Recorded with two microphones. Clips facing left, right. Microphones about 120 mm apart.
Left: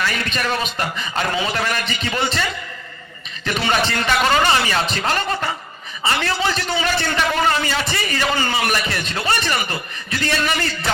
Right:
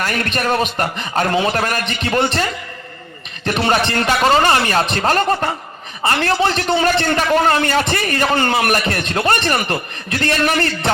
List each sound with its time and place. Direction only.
0.0 s a man's voice: 55° right (ahead or behind)
3.5 s a man's voice: 60° right (ahead or behind)